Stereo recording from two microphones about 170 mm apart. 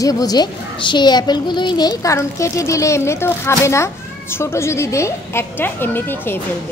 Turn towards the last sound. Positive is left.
turn(degrees=10)  # may be behind; listen again after turning